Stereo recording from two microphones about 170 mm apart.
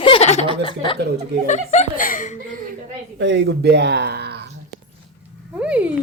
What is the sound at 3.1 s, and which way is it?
Speech, 90° right.